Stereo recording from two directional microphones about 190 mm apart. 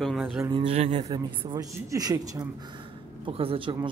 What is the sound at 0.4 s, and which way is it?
Speech, 25° right (ahead or behind).